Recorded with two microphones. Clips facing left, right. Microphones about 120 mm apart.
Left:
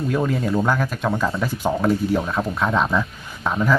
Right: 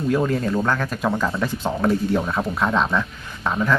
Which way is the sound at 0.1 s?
Centre (ahead or behind).